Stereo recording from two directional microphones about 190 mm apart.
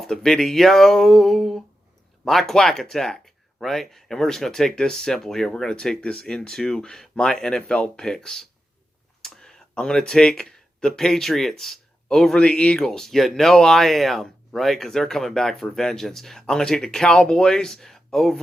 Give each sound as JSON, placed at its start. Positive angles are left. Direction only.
{"t": 0.0, "sound": "speech", "side_deg": 0}